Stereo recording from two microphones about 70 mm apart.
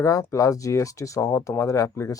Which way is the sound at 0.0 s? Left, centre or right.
Left.